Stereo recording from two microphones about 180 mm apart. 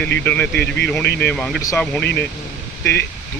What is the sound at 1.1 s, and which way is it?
Speech, 65° left (ahead or behind).